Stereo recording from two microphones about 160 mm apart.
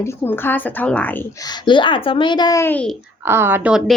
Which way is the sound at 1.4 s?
30° left (ahead or behind).